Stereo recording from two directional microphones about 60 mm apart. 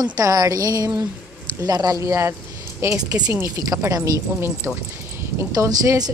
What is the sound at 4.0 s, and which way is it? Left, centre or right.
Speech, right.